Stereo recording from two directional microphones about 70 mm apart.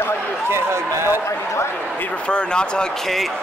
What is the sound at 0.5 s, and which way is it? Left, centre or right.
Speech, right.